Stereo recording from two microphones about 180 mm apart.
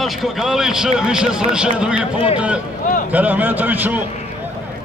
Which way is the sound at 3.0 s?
10° right (ahead or behind).